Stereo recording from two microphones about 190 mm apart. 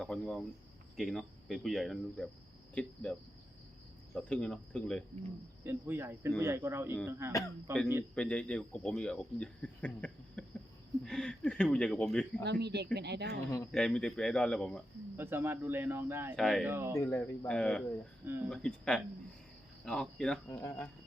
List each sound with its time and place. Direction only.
0.0 s speech: centre (ahead or behind)
5.6 s speech: 10° right (ahead or behind)
8.1 s speech: 5° left (ahead or behind)
12.4 s speech: 65° right (ahead or behind)
13.7 s speech: 5° left (ahead or behind)
15.1 s speech: 10° right (ahead or behind)
16.3 s speech: centre (ahead or behind)
16.6 s speech: 10° right (ahead or behind)
16.9 s speech: 15° left (ahead or behind)
17.2 s speech: 5° left (ahead or behind)
18.3 s speech: 10° right (ahead or behind)
18.5 s speech: centre (ahead or behind)